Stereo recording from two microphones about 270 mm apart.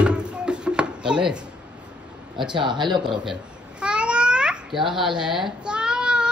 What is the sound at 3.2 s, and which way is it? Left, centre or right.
Babbling, centre.